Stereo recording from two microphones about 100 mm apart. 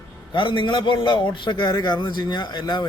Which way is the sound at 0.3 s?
55° left (ahead or behind).